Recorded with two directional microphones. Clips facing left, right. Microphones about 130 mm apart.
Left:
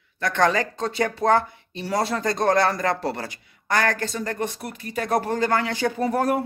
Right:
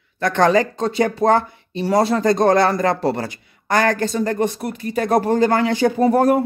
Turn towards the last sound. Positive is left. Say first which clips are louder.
# right 7 dB
turn(degrees=-30)  # may be behind; listen again after turning